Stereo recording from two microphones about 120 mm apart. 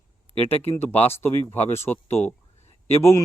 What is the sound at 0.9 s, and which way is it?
A man's voice, 20° left (ahead or behind).